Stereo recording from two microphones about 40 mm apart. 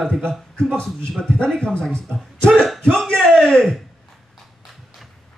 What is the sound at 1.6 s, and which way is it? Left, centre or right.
Speech, left.